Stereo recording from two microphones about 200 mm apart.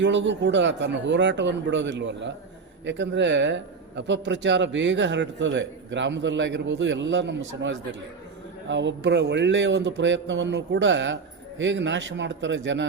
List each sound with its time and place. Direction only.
0.0 s a man's voice: 65° right (ahead or behind)